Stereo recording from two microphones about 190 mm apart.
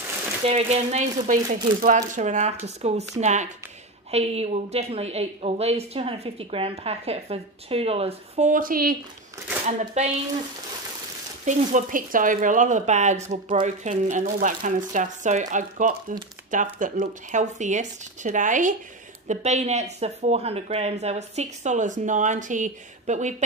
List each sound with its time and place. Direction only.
0.5 s speech: 35° right (ahead or behind); by 8.9 s 50° right (ahead or behind)
9.7 s speech: 35° right (ahead or behind)
11.4 s speech: 45° right (ahead or behind)